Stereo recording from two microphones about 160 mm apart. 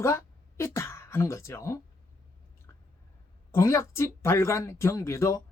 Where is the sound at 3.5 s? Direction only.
15° left (ahead or behind).